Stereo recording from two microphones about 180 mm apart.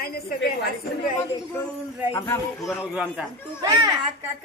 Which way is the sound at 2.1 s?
15° left (ahead or behind).